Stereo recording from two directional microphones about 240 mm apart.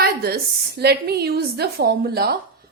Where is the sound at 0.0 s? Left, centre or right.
Right.